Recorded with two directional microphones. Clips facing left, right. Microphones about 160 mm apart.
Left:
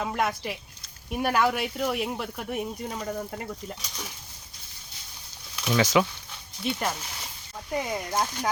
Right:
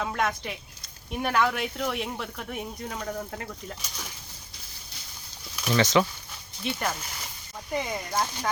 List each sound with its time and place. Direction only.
0.0 s speech: 5° left (ahead or behind)
5.6 s speech: 5° left (ahead or behind)
8.1 s speech: 15° left (ahead or behind)